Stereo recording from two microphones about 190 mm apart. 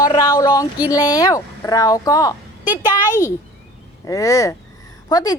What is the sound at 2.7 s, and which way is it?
Speech, 10° right (ahead or behind).